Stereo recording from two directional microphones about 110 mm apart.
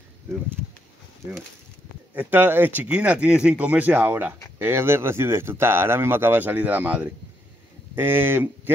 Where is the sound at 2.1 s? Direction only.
15° right (ahead or behind).